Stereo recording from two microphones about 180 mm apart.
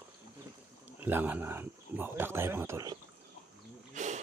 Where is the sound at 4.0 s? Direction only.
40° right (ahead or behind).